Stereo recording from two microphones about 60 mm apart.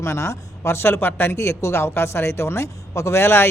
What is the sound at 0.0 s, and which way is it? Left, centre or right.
Speech, left.